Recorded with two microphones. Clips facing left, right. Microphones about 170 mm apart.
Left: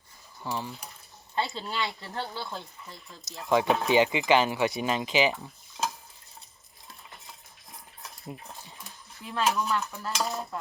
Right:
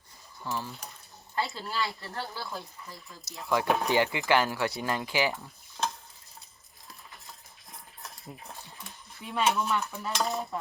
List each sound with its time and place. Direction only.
0.4 s speech: 15° left (ahead or behind)
7.3 s a sound: centre (ahead or behind)
9.2 s speech: centre (ahead or behind)